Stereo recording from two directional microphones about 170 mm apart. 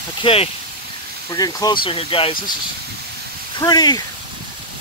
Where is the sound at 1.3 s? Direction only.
20° left (ahead or behind).